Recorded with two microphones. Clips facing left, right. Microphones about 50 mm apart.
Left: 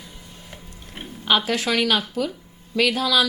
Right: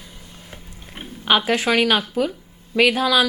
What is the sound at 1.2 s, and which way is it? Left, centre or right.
Speech, right.